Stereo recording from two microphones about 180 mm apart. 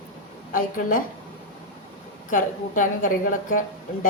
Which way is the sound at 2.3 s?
45° left (ahead or behind).